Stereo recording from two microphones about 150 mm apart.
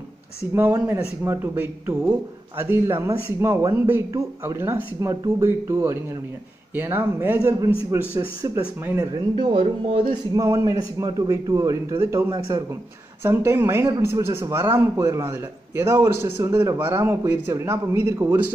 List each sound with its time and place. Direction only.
0.6 s a man's voice: 15° right (ahead or behind)
9.0 s a man's voice: 30° right (ahead or behind)
10.4 s a man's voice: 20° right (ahead or behind)